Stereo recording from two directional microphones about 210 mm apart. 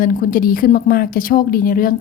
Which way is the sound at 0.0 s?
40° left (ahead or behind).